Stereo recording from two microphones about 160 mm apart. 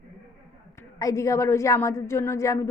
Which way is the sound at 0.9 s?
20° left (ahead or behind).